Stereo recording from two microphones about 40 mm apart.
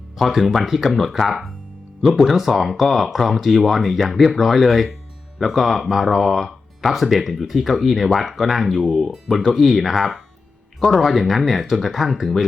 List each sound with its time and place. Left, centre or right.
0.2 s speech: centre
8.7 s speech: centre
9.2 s speech: centre